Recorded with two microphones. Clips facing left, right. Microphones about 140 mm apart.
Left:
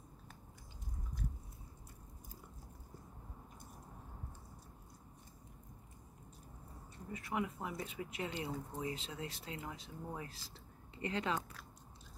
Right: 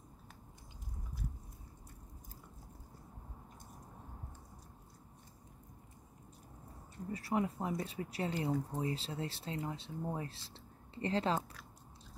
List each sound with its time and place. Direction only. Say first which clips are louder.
7.1 s speech: right 4 dB; 35° right (ahead or behind)